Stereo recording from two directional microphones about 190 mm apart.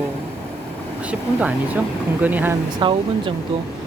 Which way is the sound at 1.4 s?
5° right (ahead or behind).